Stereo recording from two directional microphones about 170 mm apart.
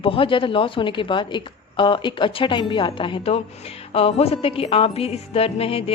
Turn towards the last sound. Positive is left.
turn(degrees=35)  # may be behind; listen again after turning